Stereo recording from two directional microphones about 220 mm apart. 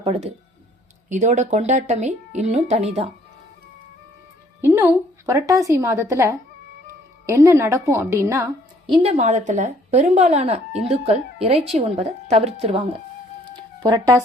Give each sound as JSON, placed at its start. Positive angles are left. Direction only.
{"t": 0.0, "sound": "a woman's voice", "side_deg": -25}
{"t": 4.6, "sound": "a woman's voice", "side_deg": -10}
{"t": 8.9, "sound": "a woman's voice", "side_deg": -30}
{"t": 13.7, "sound": "speech", "side_deg": -15}